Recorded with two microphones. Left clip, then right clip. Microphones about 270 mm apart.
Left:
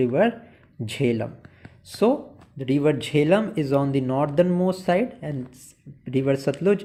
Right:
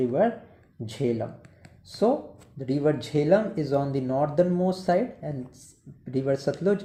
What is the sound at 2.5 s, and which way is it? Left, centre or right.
Speech, centre.